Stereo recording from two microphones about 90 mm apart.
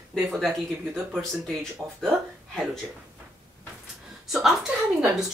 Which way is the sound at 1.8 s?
35° right (ahead or behind).